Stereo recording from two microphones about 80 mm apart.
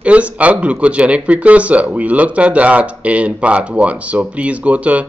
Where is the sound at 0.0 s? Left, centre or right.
Centre.